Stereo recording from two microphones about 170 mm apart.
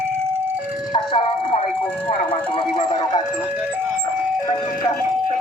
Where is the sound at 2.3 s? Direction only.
30° left (ahead or behind).